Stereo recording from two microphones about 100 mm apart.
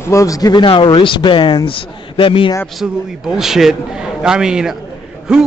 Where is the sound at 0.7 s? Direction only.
55° left (ahead or behind).